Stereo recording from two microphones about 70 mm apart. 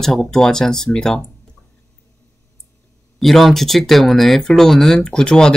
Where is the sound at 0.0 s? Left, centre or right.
Centre.